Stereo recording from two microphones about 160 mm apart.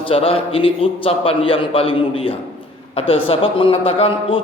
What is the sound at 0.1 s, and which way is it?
A man's voice, 35° left (ahead or behind).